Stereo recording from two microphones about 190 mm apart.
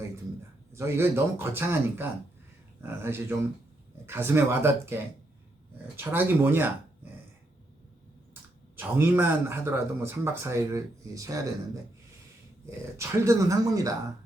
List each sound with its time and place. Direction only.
0.7 s speech: 15° right (ahead or behind)
8.7 s speech: 10° right (ahead or behind)
13.0 s speech: 15° right (ahead or behind)